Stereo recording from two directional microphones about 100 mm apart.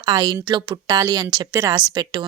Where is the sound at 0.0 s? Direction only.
45° right (ahead or behind).